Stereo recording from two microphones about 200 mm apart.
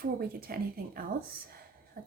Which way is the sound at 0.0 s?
50° right (ahead or behind).